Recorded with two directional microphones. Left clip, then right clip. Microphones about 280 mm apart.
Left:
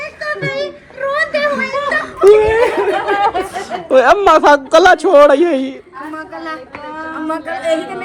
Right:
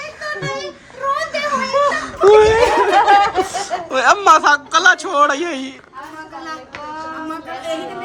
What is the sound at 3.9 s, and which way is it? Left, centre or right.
A woman's voice, centre.